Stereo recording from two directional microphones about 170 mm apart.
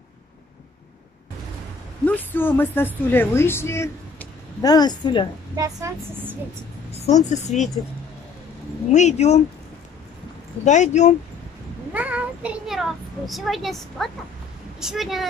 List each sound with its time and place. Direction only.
2.0 s a woman's voice: 10° left (ahead or behind)
5.6 s a woman's voice: 15° right (ahead or behind)
7.2 s speech: 45° left (ahead or behind)
7.5 s a child's voice: centre (ahead or behind)
8.9 s speech: 40° left (ahead or behind)
10.6 s speech: 45° left (ahead or behind)
11.9 s a child's voice: 10° right (ahead or behind)